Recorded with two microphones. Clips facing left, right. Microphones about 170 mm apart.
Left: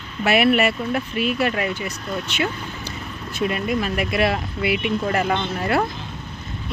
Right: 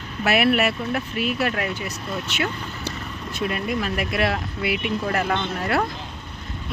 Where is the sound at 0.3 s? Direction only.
Centre (ahead or behind).